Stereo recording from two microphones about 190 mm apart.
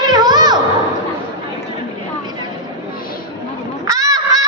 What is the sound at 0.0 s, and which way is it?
Children playing, 20° right (ahead or behind).